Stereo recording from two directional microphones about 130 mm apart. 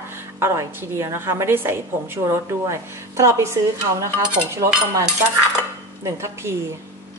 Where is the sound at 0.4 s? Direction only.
20° right (ahead or behind).